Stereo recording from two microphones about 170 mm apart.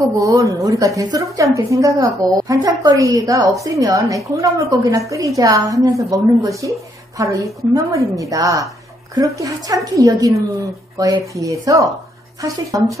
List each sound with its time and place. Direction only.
0.2 s a woman's voice: 20° right (ahead or behind)